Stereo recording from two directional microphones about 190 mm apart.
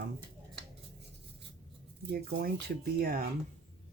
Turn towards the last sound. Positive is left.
turn(degrees=-50)  # may be behind; listen again after turning